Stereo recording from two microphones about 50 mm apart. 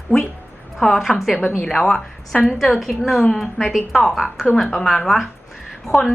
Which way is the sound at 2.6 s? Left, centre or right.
Centre.